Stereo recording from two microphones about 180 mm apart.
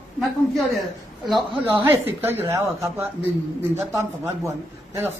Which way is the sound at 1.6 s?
10° right (ahead or behind).